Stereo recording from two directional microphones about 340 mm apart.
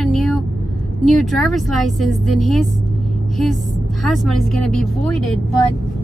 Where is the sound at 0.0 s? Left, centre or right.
Centre.